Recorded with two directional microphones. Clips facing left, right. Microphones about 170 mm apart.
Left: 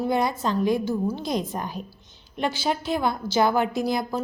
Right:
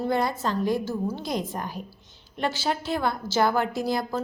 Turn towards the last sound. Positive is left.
turn(degrees=15)  # may be behind; listen again after turning